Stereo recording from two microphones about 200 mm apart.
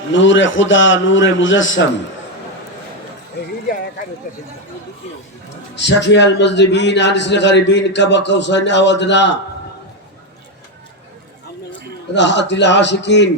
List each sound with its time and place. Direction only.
0.1 s a man's voice: 70° left (ahead or behind)
5.7 s a man's voice: 60° left (ahead or behind)
12.1 s a man's voice: 60° left (ahead or behind)